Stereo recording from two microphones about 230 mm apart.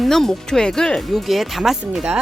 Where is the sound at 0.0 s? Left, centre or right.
Centre.